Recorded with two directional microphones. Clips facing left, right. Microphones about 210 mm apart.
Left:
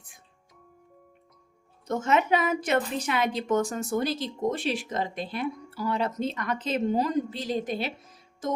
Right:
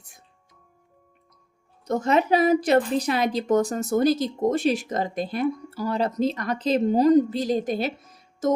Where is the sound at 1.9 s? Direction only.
35° right (ahead or behind).